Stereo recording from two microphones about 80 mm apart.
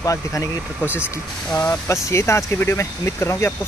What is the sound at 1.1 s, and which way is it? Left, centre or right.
Speech, left.